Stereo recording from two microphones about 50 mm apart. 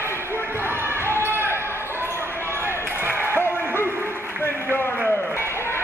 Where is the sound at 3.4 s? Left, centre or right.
Left.